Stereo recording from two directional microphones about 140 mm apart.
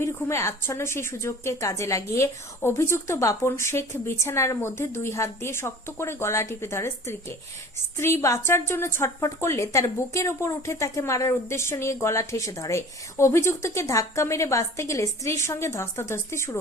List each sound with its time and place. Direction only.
0.0 s speech: 20° left (ahead or behind)